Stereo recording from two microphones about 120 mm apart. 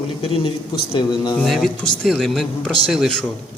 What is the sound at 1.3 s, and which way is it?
Speech, centre (ahead or behind).